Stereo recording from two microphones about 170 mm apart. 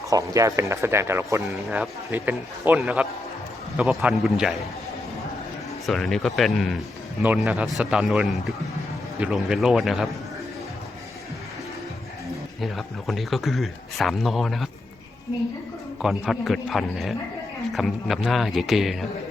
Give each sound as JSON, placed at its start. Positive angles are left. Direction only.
{"t": 0.1, "sound": "speech", "side_deg": -20}
{"t": 1.5, "sound": "speech", "side_deg": -5}
{"t": 5.8, "sound": "speech", "side_deg": 0}
{"t": 12.6, "sound": "speech", "side_deg": 0}
{"t": 16.0, "sound": "speech", "side_deg": 0}